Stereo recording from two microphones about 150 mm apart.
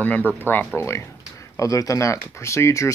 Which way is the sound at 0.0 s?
10° left (ahead or behind).